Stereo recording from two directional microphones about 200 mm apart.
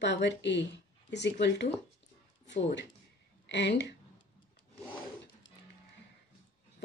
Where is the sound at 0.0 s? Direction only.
60° left (ahead or behind).